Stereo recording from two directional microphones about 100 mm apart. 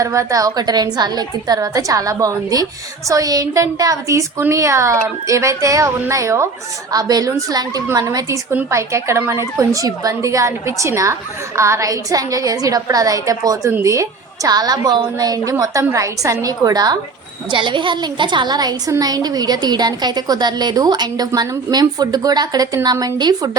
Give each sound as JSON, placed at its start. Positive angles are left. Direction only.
{"t": 0.0, "sound": "a woman's voice", "side_deg": -30}
{"t": 17.5, "sound": "a woman's voice", "side_deg": -55}